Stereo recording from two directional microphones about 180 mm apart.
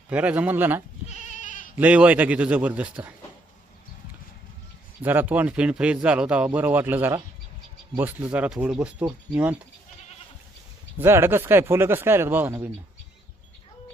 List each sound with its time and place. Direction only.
0.1 s speech: 10° right (ahead or behind)
1.0 s goat: 40° left (ahead or behind)
1.8 s speech: 10° right (ahead or behind)
5.0 s speech: 10° right (ahead or behind)
10.9 s speech: 15° right (ahead or behind)